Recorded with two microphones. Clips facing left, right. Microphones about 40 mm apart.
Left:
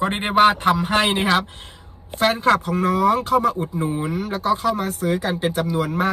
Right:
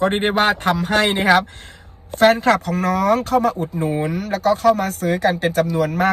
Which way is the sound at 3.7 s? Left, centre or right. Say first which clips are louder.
Right 2 dB; right.